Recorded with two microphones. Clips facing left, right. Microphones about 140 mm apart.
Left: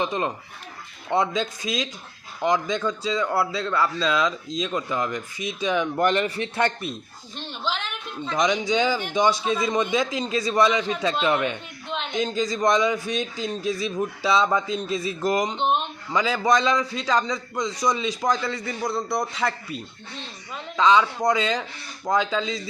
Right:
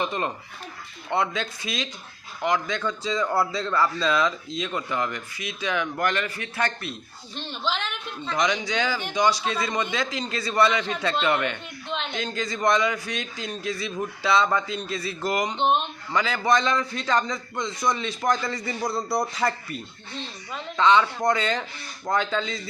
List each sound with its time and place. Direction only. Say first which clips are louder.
0.0 s a man's voice: left 2 dB; 15° left (ahead or behind)
7.6 s a woman's voice: even; 5° left (ahead or behind)
12.6 s a man's voice: left 1 dB; 15° left (ahead or behind)
13.9 s a man's voice: left 3 dB; centre (ahead or behind)
14.3 s a man's voice: left 1 dB; 10° left (ahead or behind)
20.7 s a man's voice: left 1 dB; 10° left (ahead or behind)